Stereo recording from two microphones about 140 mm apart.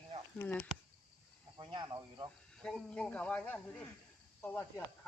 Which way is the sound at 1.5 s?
30° right (ahead or behind).